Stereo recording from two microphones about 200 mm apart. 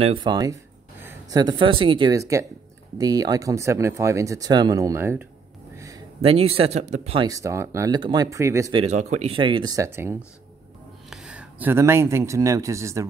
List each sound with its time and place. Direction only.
0.0 s speech: 25° right (ahead or behind)
5.8 s a sound: 15° right (ahead or behind)
6.2 s speech: 30° right (ahead or behind)
7.2 s speech: 15° right (ahead or behind)
8.7 s speech: 35° right (ahead or behind); by 13.0 s 15° right (ahead or behind)